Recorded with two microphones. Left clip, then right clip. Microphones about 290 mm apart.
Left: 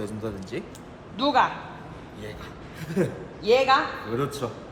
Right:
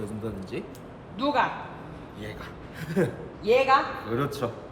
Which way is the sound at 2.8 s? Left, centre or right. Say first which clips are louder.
Even; centre.